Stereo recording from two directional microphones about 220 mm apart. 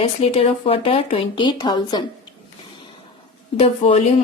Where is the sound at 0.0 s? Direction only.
25° left (ahead or behind).